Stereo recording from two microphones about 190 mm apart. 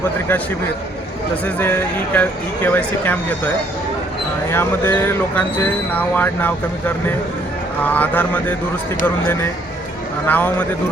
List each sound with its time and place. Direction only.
1.5 s speech: 10° left (ahead or behind)
4.5 s speech: 10° left (ahead or behind)